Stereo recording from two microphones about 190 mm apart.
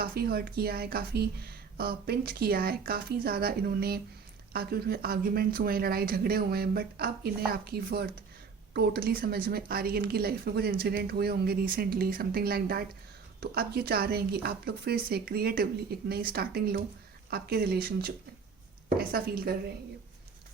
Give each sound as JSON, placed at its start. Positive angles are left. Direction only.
{"t": 0.0, "sound": "a woman's voice", "side_deg": -55}